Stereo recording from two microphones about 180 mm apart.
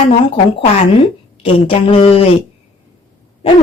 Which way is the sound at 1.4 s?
35° left (ahead or behind).